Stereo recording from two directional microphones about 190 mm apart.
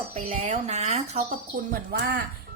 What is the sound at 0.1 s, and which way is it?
A woman's voice, 40° right (ahead or behind).